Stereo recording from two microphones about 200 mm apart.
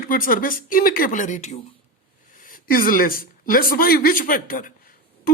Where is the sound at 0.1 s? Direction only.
45° left (ahead or behind).